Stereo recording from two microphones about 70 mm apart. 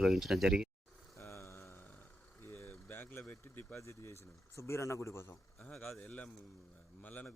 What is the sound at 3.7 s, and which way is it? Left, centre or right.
A man's voice, left.